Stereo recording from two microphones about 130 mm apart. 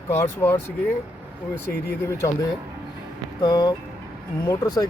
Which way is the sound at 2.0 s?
25° left (ahead or behind).